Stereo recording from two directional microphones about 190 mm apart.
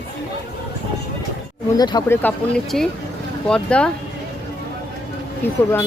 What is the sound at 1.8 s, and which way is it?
Speech, 20° left (ahead or behind).